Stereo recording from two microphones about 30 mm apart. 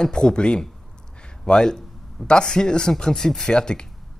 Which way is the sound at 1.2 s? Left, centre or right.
Left.